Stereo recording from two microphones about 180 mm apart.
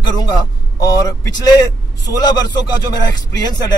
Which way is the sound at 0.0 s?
20° left (ahead or behind).